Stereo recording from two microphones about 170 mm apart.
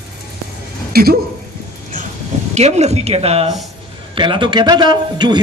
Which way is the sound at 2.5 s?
40° right (ahead or behind).